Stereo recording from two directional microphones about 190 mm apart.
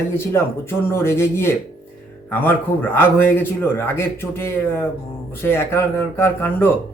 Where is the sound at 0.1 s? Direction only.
15° left (ahead or behind).